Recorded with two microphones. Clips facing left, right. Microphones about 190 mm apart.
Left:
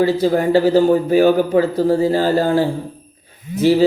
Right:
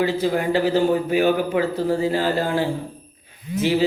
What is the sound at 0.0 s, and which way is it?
A man's voice, 35° left (ahead or behind).